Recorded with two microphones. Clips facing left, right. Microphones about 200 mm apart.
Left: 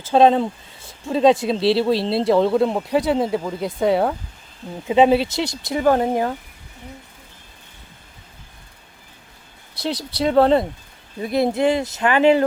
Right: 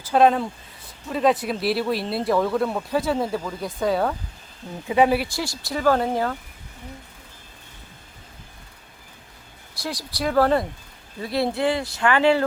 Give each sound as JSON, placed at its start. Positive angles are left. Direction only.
{"t": 0.0, "sound": "speech", "side_deg": 25}
{"t": 9.8, "sound": "speech", "side_deg": 25}